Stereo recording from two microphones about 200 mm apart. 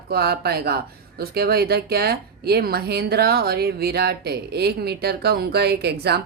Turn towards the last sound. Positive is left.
turn(degrees=-55)  # may be behind; listen again after turning